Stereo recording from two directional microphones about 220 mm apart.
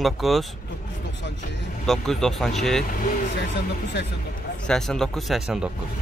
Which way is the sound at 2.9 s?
40° left (ahead or behind).